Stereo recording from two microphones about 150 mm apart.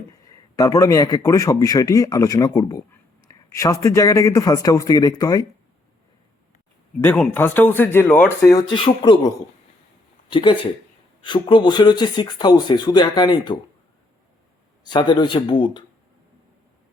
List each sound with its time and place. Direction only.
0.1 s speech: 25° left (ahead or behind)
7.0 s speech: 15° left (ahead or behind)
8.7 s speech: 35° left (ahead or behind)
14.8 s speech: 30° left (ahead or behind)